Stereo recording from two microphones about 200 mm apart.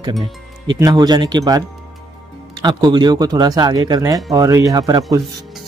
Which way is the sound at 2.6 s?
20° right (ahead or behind).